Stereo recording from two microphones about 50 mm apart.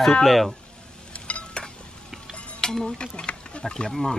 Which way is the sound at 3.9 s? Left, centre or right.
Centre.